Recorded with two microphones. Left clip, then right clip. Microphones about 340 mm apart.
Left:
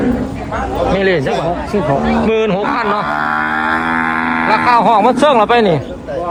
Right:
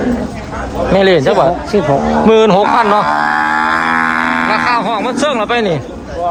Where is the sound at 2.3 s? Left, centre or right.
Centre.